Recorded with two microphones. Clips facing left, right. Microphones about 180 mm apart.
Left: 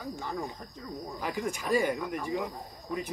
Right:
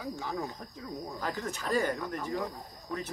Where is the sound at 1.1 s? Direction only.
10° left (ahead or behind).